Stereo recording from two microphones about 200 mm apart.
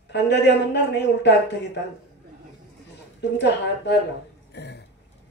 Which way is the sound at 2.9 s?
60° left (ahead or behind).